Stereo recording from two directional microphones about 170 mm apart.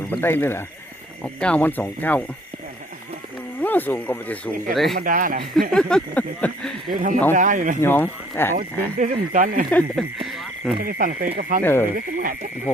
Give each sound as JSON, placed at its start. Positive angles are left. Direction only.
{"t": 0.1, "sound": "speech", "side_deg": 10}
{"t": 3.6, "sound": "speech", "side_deg": 10}
{"t": 4.9, "sound": "speech", "side_deg": -55}
{"t": 5.7, "sound": "speech", "side_deg": 5}
{"t": 6.9, "sound": "speech", "side_deg": -50}
{"t": 7.8, "sound": "speech", "side_deg": 10}
{"t": 9.0, "sound": "speech", "side_deg": -50}
{"t": 9.6, "sound": "speech", "side_deg": 5}
{"t": 10.8, "sound": "speech", "side_deg": -60}
{"t": 11.6, "sound": "speech", "side_deg": 15}